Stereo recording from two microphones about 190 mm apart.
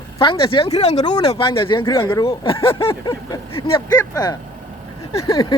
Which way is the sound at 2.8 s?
15° left (ahead or behind).